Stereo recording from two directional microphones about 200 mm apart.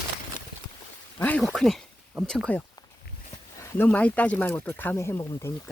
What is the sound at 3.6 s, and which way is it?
Speech, 10° left (ahead or behind).